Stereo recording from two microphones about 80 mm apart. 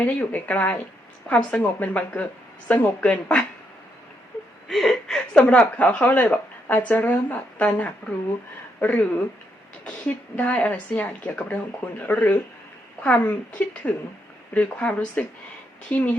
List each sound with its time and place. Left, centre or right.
0.0 s a woman's voice: centre
4.7 s a woman's voice: centre